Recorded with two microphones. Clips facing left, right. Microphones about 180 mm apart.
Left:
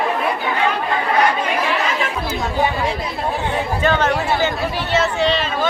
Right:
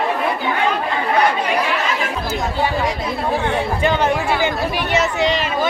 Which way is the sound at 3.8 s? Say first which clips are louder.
Left 1 dB; 15° right (ahead or behind).